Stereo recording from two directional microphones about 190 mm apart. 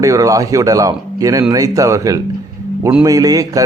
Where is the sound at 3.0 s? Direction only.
20° right (ahead or behind).